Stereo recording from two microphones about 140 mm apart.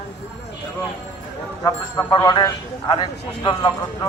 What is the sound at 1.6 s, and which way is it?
A man's voice, 25° left (ahead or behind).